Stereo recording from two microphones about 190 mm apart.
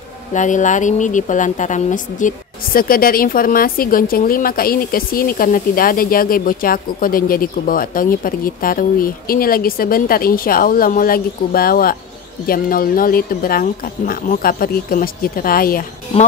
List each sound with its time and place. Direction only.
0.3 s a woman's voice: 40° left (ahead or behind)